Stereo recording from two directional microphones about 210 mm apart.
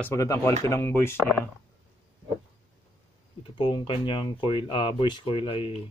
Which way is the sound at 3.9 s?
25° left (ahead or behind).